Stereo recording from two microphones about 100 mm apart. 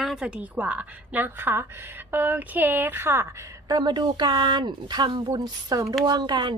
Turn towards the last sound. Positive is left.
turn(degrees=-50)  # may be behind; listen again after turning